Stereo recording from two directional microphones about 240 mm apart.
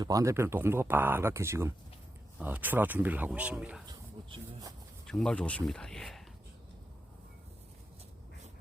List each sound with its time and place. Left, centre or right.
0.0 s speech: centre
5.0 s speech: centre